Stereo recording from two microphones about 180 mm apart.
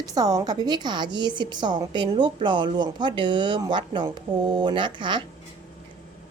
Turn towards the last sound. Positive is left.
turn(degrees=-25)  # may be behind; listen again after turning